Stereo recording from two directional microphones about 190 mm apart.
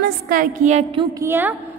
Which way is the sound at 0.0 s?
50° right (ahead or behind).